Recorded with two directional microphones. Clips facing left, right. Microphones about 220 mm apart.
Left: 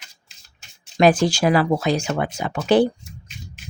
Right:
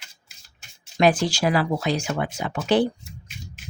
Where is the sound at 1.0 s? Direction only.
50° left (ahead or behind).